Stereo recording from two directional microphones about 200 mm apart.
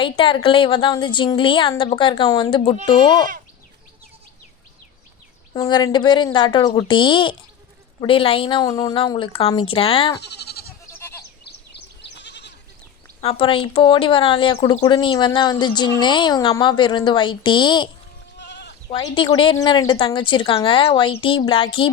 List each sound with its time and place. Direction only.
0.0 s speech: 25° left (ahead or behind)
5.5 s speech: 20° left (ahead or behind)
10.2 s goat: 55° left (ahead or behind)
11.7 s goat: 60° left (ahead or behind)
13.2 s speech: 25° left (ahead or behind)
18.3 s sheep: 60° left (ahead or behind)
19.1 s speech: 25° left (ahead or behind)